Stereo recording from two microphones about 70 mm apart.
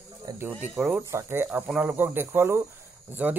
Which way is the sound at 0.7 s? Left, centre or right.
Right.